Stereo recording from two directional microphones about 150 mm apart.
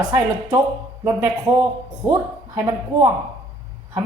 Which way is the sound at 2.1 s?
25° right (ahead or behind).